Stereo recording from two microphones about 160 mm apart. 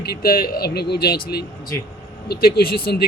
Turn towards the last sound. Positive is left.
turn(degrees=70)  # may be behind; listen again after turning